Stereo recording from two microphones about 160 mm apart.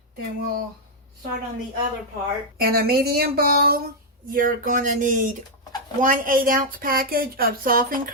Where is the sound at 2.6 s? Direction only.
70° right (ahead or behind).